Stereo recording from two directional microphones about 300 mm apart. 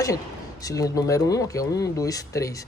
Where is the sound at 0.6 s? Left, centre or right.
Centre.